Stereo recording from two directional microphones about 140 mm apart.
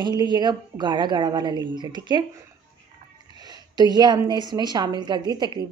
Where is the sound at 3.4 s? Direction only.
30° right (ahead or behind).